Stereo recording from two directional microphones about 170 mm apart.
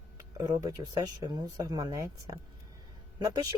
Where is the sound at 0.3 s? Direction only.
20° right (ahead or behind).